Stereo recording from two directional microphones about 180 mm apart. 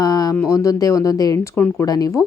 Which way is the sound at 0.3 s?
20° left (ahead or behind).